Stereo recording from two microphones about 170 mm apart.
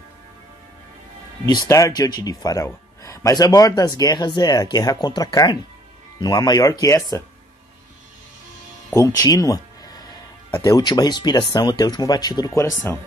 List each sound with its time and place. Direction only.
1.7 s speech: 20° left (ahead or behind)
8.9 s speech: 20° left (ahead or behind)